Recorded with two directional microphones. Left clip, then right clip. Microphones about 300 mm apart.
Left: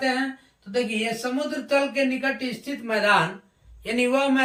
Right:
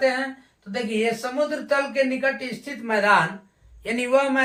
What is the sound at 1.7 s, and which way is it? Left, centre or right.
Speech, centre.